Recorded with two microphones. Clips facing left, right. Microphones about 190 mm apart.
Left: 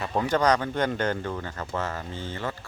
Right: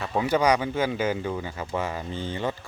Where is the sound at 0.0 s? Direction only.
5° right (ahead or behind).